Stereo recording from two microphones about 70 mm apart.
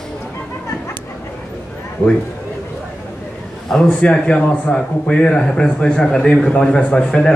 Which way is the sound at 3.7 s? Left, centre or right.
Centre.